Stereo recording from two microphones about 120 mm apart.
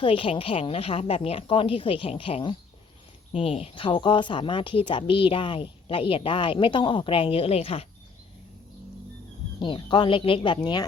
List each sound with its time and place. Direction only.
0.0 s speech: 50° left (ahead or behind)
9.6 s speech: 45° left (ahead or behind)